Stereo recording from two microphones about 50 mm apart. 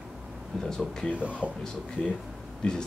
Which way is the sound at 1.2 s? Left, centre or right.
Right.